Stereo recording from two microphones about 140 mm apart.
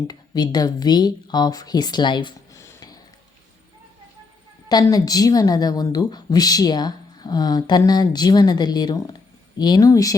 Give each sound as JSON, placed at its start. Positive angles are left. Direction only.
{"t": 0.1, "sound": "a woman's voice", "side_deg": 30}
{"t": 2.6, "sound": "a sound", "side_deg": 25}
{"t": 4.7, "sound": "a woman's voice", "side_deg": 25}